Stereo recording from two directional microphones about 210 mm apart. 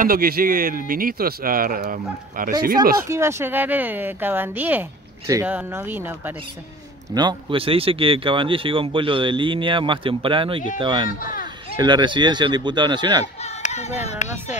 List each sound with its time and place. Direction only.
0.0 s speech: 45° right (ahead or behind)
3.1 s speech: 10° right (ahead or behind)
7.2 s speech: 20° right (ahead or behind)
11.1 s speech: 40° left (ahead or behind)
11.8 s speech: 20° right (ahead or behind)
13.4 s speech: 30° left (ahead or behind)